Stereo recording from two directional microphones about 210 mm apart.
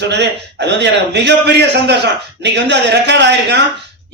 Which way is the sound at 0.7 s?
55° right (ahead or behind).